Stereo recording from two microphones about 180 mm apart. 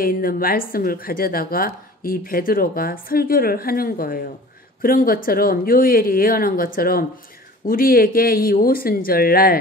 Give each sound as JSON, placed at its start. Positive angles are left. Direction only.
{"t": 0.0, "sound": "a woman's voice", "side_deg": 55}